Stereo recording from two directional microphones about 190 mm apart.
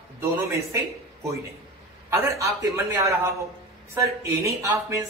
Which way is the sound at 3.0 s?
15° right (ahead or behind).